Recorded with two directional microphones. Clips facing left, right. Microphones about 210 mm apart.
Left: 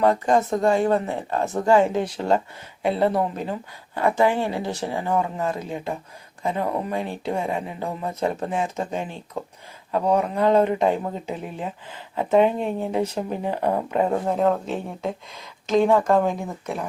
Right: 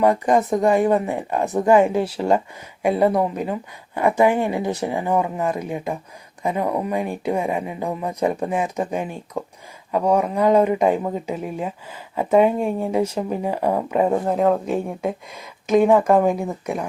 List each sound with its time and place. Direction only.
0.0 s speech: 15° right (ahead or behind)